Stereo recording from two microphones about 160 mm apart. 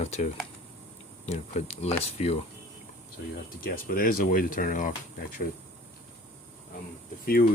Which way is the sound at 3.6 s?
65° left (ahead or behind).